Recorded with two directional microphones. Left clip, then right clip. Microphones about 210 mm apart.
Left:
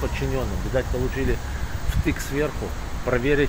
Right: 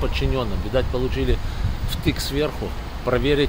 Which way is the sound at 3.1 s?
15° right (ahead or behind).